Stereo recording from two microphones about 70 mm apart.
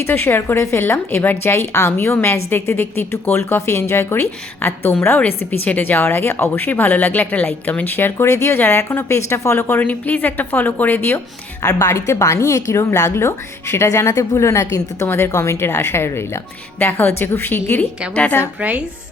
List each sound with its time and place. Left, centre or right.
0.0 s a woman's voice: left
8.3 s a woman's voice: left
8.5 s a woman's voice: left
9.8 s a woman's voice: left
11.6 s a woman's voice: left
15.0 s a woman's voice: left